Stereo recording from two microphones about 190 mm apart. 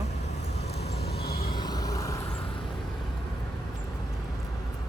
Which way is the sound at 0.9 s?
55° left (ahead or behind).